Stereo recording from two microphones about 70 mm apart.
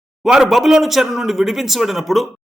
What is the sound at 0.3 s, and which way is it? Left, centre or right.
Speech, centre.